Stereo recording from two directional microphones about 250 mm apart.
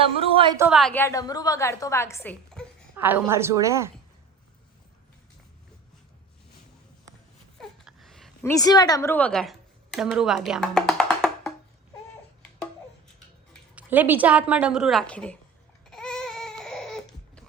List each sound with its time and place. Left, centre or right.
0.0 s a woman's voice: right
0.6 s a woman's voice: centre
2.9 s a woman's voice: centre
7.6 s a sound: centre
13.5 s a woman's voice: centre
15.9 s baby cry: centre